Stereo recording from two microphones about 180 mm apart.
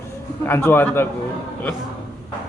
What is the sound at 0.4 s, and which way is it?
Speech, 10° left (ahead or behind).